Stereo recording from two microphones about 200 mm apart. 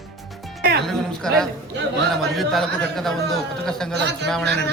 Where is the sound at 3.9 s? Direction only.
60° right (ahead or behind).